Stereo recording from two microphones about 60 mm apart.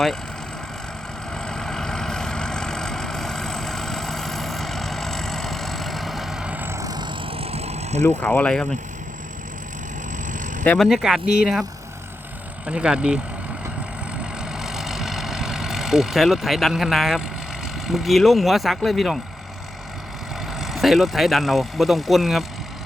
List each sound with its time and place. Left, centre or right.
1.3 s vehicle: centre
6.7 s vehicle: right
8.0 s speech: left
10.8 s speech: centre
12.6 s speech: centre
14.5 s vehicle: centre
17.8 s speech: centre
20.6 s speech: centre